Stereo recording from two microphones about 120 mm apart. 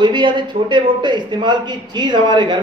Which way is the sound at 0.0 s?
40° right (ahead or behind).